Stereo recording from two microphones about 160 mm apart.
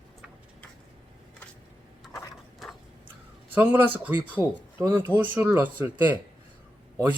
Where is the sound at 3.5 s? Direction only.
10° right (ahead or behind).